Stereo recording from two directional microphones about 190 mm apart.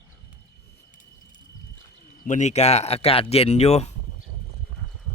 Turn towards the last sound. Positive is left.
turn(degrees=35)  # may be behind; listen again after turning